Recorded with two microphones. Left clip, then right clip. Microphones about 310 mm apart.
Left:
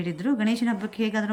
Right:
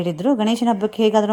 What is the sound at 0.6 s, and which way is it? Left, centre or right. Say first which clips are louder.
Speech: right 9 dB; right.